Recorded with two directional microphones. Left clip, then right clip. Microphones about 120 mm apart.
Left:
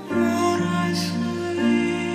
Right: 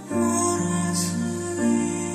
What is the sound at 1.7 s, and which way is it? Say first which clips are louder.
Music: left 3 dB; 40° right (ahead or behind).